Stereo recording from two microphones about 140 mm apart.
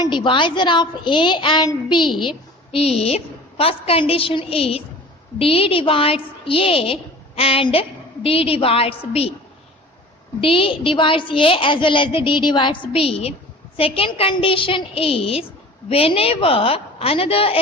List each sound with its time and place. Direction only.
0.0 s a woman's voice: 35° left (ahead or behind)
2.7 s a woman's voice: 45° left (ahead or behind)
10.4 s a woman's voice: 40° left (ahead or behind)